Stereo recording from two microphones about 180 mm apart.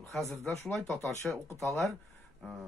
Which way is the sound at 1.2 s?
15° left (ahead or behind).